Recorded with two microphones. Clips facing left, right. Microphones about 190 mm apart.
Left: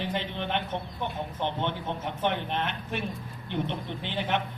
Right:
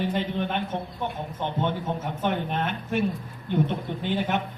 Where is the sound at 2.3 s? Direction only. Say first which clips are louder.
Right 3 dB; 45° right (ahead or behind).